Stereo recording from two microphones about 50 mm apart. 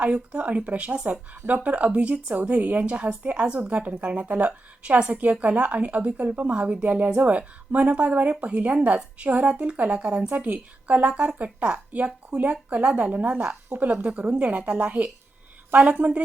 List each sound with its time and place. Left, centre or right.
0.0 s a woman's voice: right